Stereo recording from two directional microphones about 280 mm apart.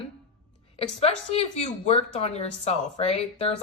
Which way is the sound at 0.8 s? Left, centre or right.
Left.